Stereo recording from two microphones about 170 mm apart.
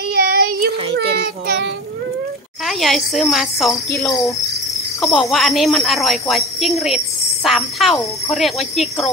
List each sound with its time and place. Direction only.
0.1 s child singing: 65° right (ahead or behind); by 1.7 s 85° right
2.6 s speech: centre (ahead or behind)
3.9 s cricket: 20° left (ahead or behind)
5.0 s speech: centre (ahead or behind)